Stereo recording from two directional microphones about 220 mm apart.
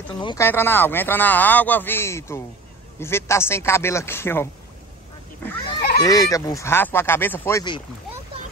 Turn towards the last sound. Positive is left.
turn(degrees=15)  # may be behind; listen again after turning